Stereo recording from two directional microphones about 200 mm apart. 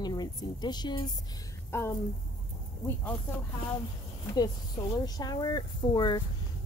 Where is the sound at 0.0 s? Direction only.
20° left (ahead or behind).